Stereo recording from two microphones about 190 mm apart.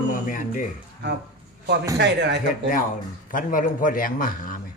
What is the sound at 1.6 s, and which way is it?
Speech, 65° right (ahead or behind).